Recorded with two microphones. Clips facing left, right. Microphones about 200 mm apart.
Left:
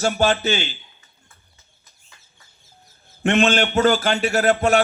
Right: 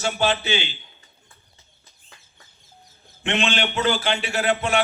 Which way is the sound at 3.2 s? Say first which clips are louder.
Left 6 dB; 45° left (ahead or behind).